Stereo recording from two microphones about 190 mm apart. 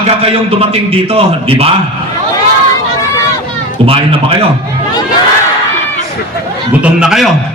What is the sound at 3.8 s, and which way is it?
Speech, 30° right (ahead or behind).